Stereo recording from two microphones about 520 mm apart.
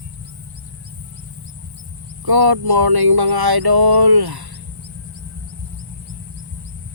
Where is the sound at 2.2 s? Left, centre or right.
Right.